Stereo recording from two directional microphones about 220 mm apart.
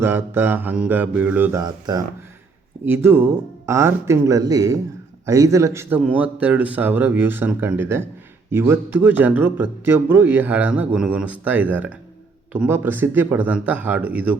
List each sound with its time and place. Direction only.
0.0 s speech: 10° right (ahead or behind)